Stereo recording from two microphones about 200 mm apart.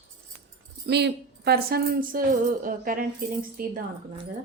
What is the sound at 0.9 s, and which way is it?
Speech, 55° right (ahead or behind).